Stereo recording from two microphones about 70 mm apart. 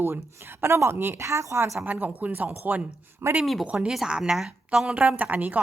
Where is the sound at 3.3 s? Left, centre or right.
Centre.